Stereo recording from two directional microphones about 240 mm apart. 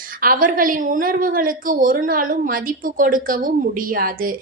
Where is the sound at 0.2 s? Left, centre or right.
Right.